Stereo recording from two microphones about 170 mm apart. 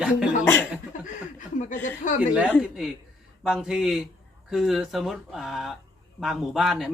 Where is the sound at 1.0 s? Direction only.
45° left (ahead or behind).